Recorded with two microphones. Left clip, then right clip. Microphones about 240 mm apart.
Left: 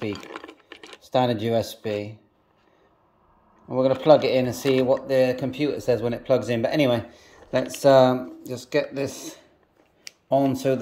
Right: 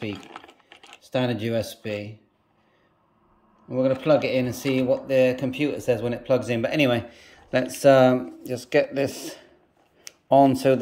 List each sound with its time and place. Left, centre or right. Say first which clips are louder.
1.0 s speech: left 4 dB; centre
3.7 s speech: left 3 dB; centre